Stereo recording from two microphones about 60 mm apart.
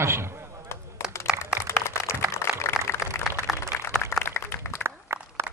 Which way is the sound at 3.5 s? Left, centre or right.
Centre.